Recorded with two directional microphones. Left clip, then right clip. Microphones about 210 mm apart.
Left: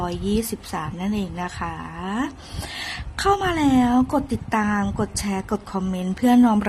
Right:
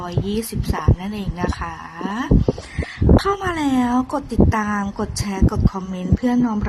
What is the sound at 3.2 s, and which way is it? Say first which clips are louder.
A woman's voice: left 5 dB; 10° left (ahead or behind).